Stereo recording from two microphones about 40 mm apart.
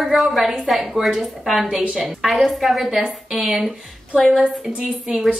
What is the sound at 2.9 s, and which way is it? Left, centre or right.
Speech, centre.